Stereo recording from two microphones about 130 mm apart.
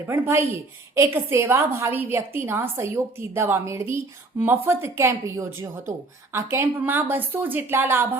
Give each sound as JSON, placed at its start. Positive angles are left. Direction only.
{"t": 0.0, "sound": "a woman's voice", "side_deg": -20}